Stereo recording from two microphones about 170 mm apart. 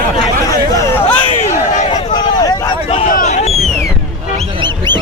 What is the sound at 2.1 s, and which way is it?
Vehicle, 25° left (ahead or behind).